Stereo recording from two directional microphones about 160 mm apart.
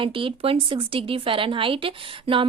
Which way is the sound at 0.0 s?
35° right (ahead or behind).